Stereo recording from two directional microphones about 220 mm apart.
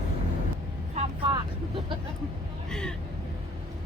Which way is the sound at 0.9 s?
25° right (ahead or behind).